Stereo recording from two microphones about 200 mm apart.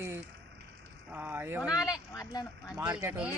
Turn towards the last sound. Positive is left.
turn(degrees=-10)  # may be behind; listen again after turning